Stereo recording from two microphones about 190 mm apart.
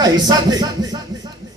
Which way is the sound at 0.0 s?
20° right (ahead or behind).